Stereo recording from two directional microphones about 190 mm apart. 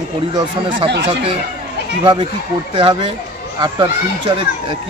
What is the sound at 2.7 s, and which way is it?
A man's voice, 25° right (ahead or behind).